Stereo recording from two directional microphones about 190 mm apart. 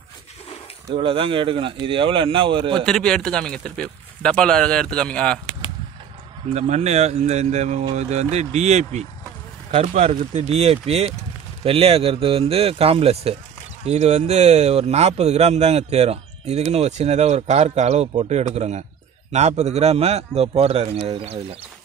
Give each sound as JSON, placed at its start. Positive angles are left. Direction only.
{"t": 0.9, "sound": "a man's voice", "side_deg": -30}
{"t": 2.8, "sound": "speech", "side_deg": 5}
{"t": 6.5, "sound": "speech", "side_deg": -35}